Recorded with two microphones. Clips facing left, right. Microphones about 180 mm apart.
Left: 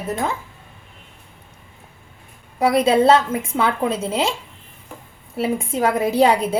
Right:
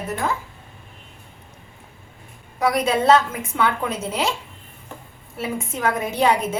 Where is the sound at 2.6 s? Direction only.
30° left (ahead or behind).